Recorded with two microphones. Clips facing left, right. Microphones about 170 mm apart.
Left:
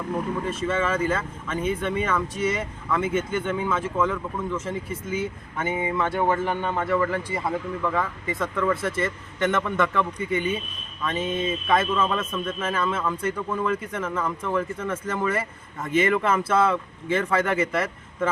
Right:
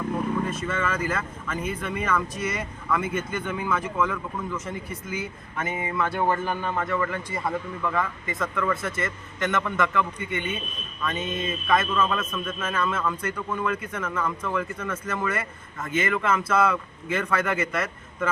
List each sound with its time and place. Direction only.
0.5 s a man's voice: 30° left (ahead or behind)